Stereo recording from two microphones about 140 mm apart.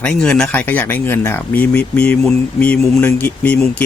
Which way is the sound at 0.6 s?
15° left (ahead or behind).